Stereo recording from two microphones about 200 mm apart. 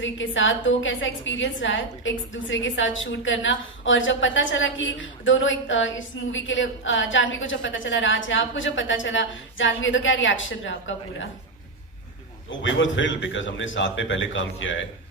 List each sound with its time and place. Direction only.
0.0 s a woman's voice: 70° left (ahead or behind)
12.4 s a woman's voice: 70° left (ahead or behind)